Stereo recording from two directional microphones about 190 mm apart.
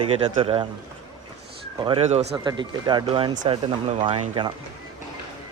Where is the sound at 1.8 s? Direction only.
30° right (ahead or behind).